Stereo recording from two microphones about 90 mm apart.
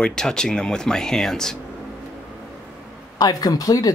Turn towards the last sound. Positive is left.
turn(degrees=40)  # may be behind; listen again after turning